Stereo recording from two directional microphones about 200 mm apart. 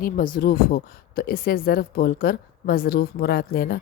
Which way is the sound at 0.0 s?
45° left (ahead or behind).